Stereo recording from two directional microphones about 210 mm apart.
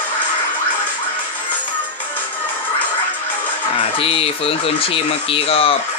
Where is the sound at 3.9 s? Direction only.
25° left (ahead or behind).